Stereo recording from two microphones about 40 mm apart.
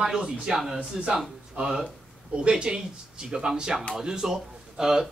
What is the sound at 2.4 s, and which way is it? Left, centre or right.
Speech, right.